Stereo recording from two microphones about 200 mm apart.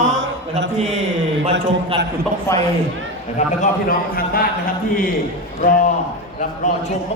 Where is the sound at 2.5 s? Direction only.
15° left (ahead or behind).